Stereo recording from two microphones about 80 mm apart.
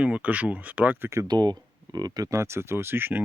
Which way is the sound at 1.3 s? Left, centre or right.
Right.